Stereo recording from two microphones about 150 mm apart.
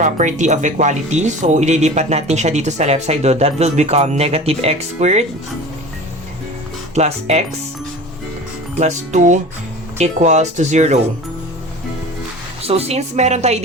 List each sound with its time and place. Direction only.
0.0 s speech: 55° right (ahead or behind)
6.9 s speech: 45° right (ahead or behind)
8.8 s speech: 50° right (ahead or behind)
12.6 s speech: 45° right (ahead or behind)